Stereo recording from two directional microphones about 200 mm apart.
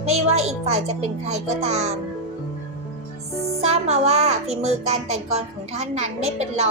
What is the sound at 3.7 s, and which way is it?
A child's voice, 35° right (ahead or behind).